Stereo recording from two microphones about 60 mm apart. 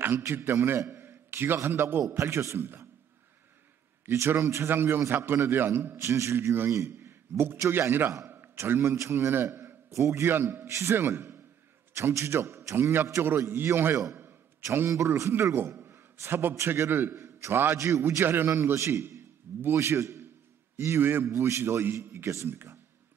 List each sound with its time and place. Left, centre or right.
0.3 s a man's voice: right
4.0 s a sound: right
4.3 s a man's voice: right
6.7 s a man's voice: right
8.6 s a man's voice: right
8.9 s a man's voice: right
10.2 s a man's voice: right
11.0 s a man's voice: right
11.9 s a man's voice: right
15.7 s a sound: right
16.3 s a man's voice: right
18.2 s a man's voice: right
21.3 s a man's voice: right